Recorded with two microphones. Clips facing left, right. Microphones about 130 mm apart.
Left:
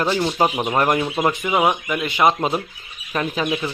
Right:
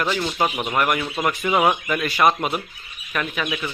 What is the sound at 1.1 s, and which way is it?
A man's voice, 20° left (ahead or behind).